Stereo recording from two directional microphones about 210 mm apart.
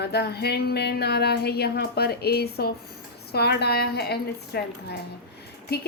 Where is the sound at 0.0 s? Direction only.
50° left (ahead or behind).